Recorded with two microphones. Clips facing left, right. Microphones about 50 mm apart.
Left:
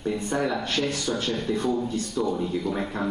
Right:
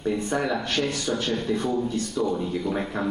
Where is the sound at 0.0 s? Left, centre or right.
Centre.